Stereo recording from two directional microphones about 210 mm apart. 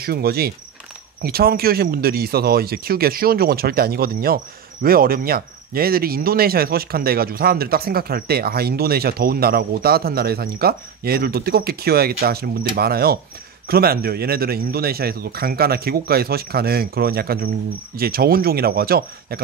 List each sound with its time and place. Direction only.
0.0 s speech: 45° right (ahead or behind)